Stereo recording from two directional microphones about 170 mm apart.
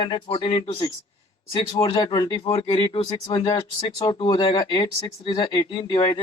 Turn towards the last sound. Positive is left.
turn(degrees=25)  # may be behind; listen again after turning